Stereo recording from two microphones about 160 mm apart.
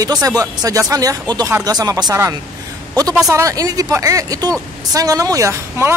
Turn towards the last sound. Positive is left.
turn(degrees=-20)  # may be behind; listen again after turning